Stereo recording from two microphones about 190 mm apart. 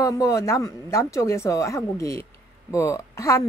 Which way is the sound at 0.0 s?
15° left (ahead or behind).